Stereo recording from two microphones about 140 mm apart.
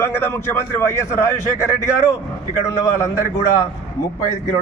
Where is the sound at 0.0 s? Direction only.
15° left (ahead or behind).